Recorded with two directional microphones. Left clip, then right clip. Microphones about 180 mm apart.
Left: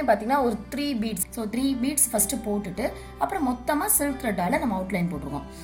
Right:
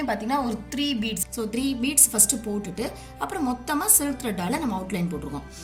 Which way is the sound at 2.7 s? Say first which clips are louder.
Left 2 dB; 40° left (ahead or behind).